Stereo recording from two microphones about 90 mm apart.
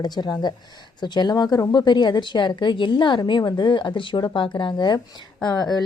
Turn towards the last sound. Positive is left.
turn(degrees=50)  # may be behind; listen again after turning